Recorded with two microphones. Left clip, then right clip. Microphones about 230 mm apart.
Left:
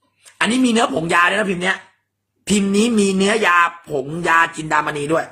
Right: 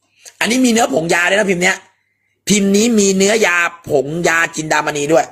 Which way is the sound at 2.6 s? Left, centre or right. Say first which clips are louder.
Right 4 dB; centre.